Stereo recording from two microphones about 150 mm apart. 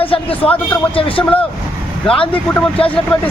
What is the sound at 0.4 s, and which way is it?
Speech, 10° left (ahead or behind).